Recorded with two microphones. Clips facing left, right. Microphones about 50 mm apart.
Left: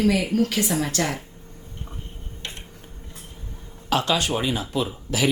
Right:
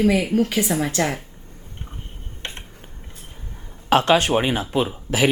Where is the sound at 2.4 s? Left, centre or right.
Right.